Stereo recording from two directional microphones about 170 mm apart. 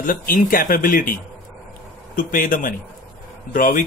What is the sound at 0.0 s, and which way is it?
Speech, 55° left (ahead or behind).